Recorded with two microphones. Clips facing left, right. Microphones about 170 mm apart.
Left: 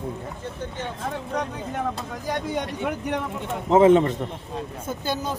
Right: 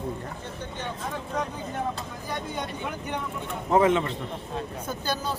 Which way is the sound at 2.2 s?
80° left.